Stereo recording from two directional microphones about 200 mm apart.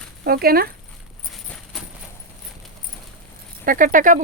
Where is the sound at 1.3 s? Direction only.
Centre (ahead or behind).